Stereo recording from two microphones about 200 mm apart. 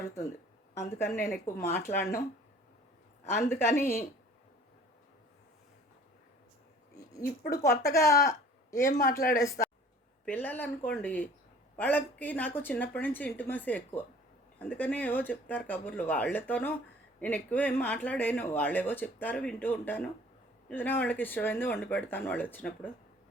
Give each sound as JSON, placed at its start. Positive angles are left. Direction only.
{"t": 0.7, "sound": "speech", "side_deg": 15}
{"t": 3.8, "sound": "speech", "side_deg": 10}
{"t": 7.2, "sound": "speech", "side_deg": 45}
{"t": 7.8, "sound": "speech", "side_deg": 15}
{"t": 8.8, "sound": "speech", "side_deg": 40}
{"t": 9.4, "sound": "speech", "side_deg": 15}